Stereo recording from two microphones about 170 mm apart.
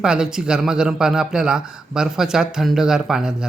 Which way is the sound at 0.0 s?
5° right (ahead or behind).